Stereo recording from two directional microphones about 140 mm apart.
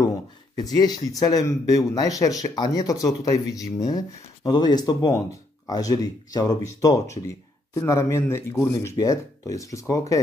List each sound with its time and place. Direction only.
0.6 s speech: 30° left (ahead or behind)